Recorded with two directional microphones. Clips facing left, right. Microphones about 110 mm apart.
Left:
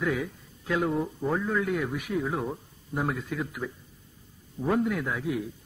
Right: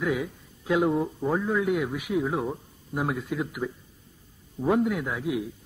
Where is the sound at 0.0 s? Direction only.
10° right (ahead or behind).